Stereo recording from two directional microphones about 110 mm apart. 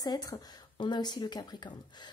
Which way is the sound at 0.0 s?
35° left (ahead or behind).